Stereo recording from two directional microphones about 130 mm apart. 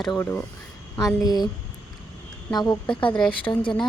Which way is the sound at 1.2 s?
30° left (ahead or behind).